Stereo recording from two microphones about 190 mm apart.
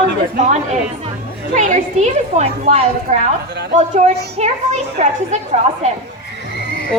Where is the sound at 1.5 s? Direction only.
40° right (ahead or behind).